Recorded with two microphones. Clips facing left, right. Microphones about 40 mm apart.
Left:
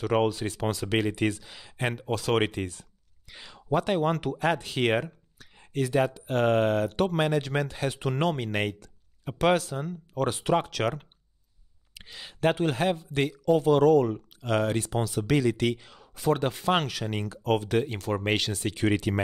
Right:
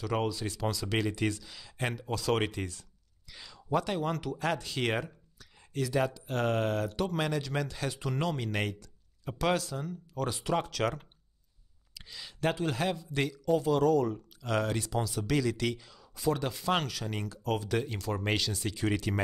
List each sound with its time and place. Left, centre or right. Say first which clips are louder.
0.0 s speech: left 7 dB; left
0.9 s speech: left 5 dB; left
2.0 s speech: left 4 dB; left
2.4 s speech: left 5 dB; left
4.4 s speech: left 5 dB; left
5.0 s speech: left 5 dB; left
6.9 s speech: left 6 dB; left
7.2 s speech: left 6 dB; left
7.9 s speech: left 6 dB; left
11.9 s speech: left 2 dB; left
14.1 s speech: left 4 dB; left